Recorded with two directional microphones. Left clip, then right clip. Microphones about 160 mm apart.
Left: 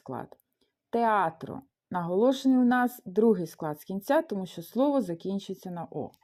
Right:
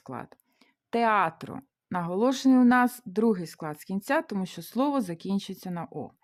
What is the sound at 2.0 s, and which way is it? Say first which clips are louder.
Speech: left 1 dB; 20° right (ahead or behind).